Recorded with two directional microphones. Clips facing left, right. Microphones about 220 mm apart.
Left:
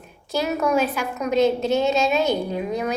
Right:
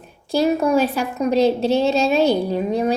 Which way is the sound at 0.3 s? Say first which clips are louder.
Right 5 dB; 30° right (ahead or behind).